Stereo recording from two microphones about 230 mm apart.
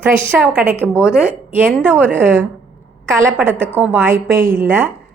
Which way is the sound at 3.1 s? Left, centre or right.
Centre.